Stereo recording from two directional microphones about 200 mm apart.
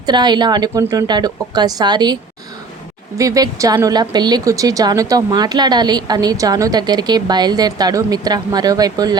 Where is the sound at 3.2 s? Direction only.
15° right (ahead or behind).